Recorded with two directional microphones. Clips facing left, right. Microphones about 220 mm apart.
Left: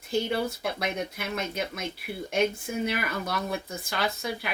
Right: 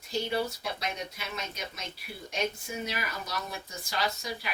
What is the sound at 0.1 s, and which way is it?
Speech, 55° left (ahead or behind).